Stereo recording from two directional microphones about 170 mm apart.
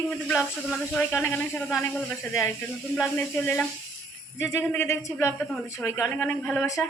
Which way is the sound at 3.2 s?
10° left (ahead or behind).